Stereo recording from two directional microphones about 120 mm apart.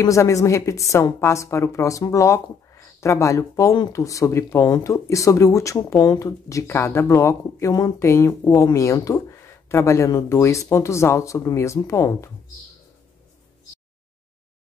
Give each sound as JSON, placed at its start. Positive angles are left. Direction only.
{"t": 0.0, "sound": "speech", "side_deg": 25}